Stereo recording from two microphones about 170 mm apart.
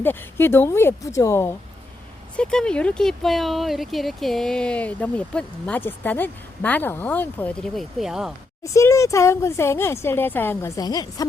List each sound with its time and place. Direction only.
0.0 s speech: 10° left (ahead or behind)
2.3 s speech: 5° left (ahead or behind)
8.6 s speech: 20° left (ahead or behind)